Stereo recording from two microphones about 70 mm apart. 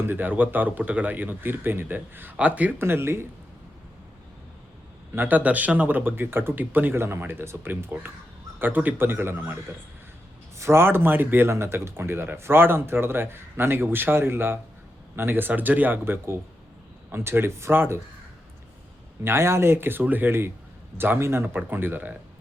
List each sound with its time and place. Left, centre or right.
0.0 s speech: right
2.7 s speech: right
5.1 s speech: right
10.6 s speech: right
19.2 s speech: right